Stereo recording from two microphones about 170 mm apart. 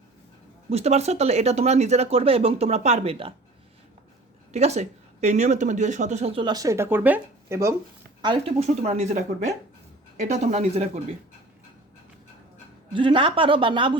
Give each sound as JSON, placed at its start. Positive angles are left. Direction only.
{"t": 0.7, "sound": "speech", "side_deg": -40}
{"t": 4.5, "sound": "speech", "side_deg": -40}
{"t": 8.2, "sound": "speech", "side_deg": -30}
{"t": 12.9, "sound": "a woman's voice", "side_deg": -30}